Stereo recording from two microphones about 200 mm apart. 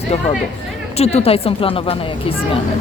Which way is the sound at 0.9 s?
30° left (ahead or behind).